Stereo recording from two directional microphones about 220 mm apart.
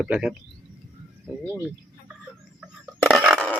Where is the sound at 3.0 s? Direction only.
Centre (ahead or behind).